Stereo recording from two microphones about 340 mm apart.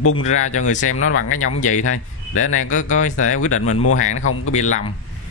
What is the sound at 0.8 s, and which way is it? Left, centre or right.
Speech, left.